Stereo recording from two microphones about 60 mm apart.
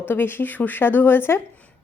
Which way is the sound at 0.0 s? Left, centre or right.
Left.